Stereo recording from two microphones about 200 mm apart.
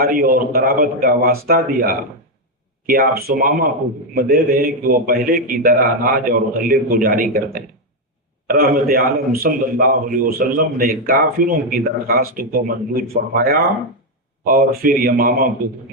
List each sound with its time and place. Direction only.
0.2 s a man's voice: 45° right (ahead or behind)